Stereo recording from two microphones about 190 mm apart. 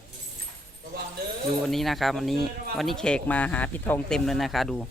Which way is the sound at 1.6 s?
Centre (ahead or behind).